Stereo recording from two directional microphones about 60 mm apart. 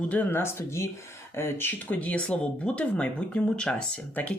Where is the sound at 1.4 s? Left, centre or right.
Left.